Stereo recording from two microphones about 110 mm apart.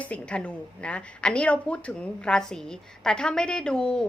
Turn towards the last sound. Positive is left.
turn(degrees=5)  # may be behind; listen again after turning